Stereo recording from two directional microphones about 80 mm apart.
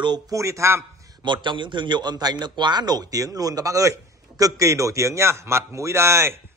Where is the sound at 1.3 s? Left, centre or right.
Right.